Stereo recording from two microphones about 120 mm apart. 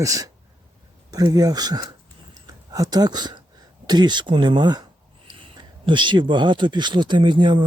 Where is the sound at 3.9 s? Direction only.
35° right (ahead or behind).